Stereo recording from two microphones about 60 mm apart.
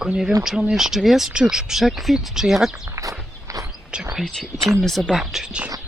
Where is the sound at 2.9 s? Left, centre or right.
Right.